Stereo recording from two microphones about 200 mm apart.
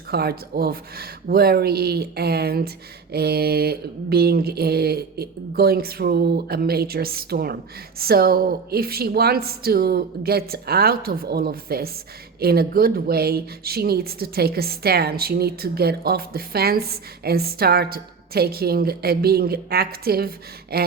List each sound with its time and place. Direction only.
0.1 s speech: 50° right (ahead or behind)